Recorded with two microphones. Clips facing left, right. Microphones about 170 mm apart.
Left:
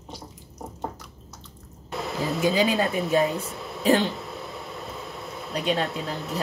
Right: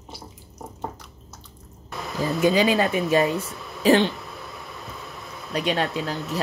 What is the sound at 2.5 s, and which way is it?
A woman's voice, 85° right.